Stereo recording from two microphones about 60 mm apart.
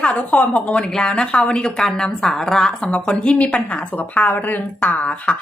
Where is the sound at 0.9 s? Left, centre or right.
Centre.